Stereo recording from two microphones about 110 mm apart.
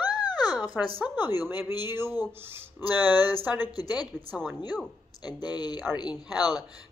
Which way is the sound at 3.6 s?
40° left (ahead or behind).